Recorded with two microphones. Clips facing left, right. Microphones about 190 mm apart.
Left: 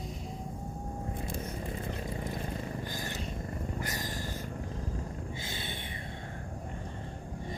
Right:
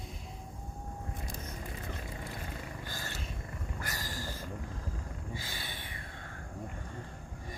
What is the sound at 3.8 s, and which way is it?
Cat, 20° left (ahead or behind).